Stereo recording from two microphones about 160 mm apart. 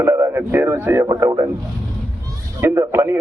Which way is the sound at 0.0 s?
15° right (ahead or behind).